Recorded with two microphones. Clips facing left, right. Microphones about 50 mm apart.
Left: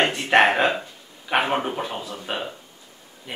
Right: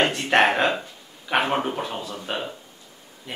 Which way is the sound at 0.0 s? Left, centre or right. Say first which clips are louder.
Left 1 dB; centre.